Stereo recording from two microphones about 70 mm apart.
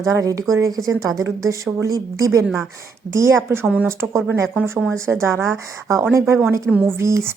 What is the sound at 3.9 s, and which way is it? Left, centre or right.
A woman's voice, right.